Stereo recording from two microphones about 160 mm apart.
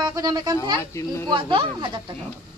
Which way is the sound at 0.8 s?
20° left (ahead or behind).